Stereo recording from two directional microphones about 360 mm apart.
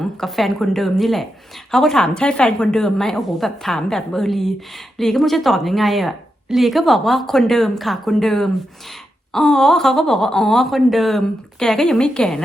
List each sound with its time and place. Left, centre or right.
0.0 s speech: centre